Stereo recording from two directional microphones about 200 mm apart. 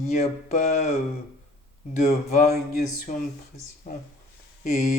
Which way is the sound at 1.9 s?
35° left (ahead or behind).